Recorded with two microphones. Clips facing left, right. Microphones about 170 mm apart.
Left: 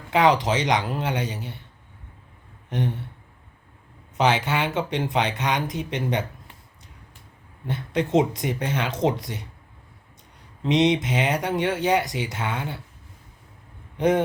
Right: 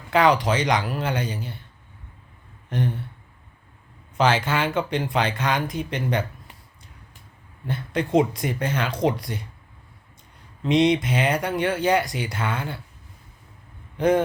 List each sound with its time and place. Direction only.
0.1 s speech: 20° left (ahead or behind)
2.6 s a sound: 20° left (ahead or behind)
4.2 s speech: 20° left (ahead or behind)
7.7 s speech: 20° left (ahead or behind)
10.6 s speech: 20° left (ahead or behind)
14.0 s speech: 20° left (ahead or behind)